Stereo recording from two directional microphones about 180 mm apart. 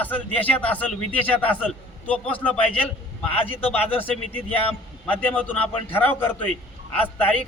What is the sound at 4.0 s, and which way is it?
A man's voice, 10° left (ahead or behind).